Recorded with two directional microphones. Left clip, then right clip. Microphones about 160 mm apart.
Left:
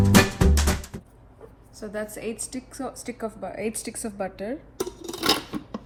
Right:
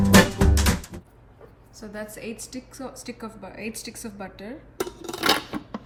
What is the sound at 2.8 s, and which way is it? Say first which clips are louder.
A woman's voice: left 5 dB; 45° left (ahead or behind).